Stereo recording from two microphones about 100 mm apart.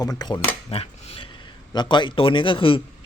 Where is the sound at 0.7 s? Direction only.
75° left (ahead or behind).